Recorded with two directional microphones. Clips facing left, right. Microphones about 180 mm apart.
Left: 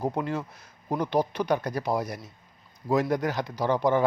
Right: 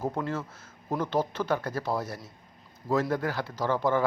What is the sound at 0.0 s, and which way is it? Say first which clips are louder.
A man's voice: left 2 dB; 15° left (ahead or behind).